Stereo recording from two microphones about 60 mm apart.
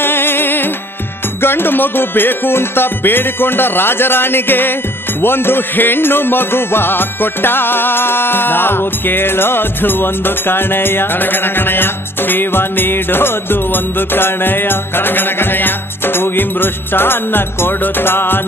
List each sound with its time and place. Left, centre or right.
0.0 s music: left